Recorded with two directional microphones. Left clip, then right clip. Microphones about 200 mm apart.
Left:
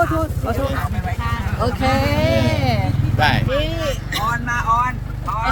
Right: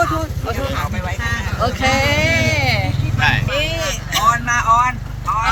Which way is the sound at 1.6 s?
10° left (ahead or behind).